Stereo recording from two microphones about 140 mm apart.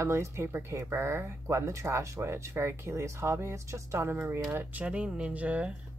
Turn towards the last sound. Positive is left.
turn(degrees=-10)  # may be behind; listen again after turning